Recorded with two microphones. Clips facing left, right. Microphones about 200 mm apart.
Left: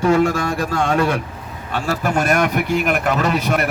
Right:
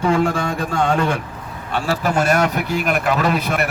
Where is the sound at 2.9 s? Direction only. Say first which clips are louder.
Even; 50° left (ahead or behind).